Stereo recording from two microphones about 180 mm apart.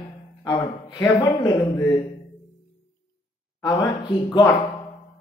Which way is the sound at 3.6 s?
25° left (ahead or behind).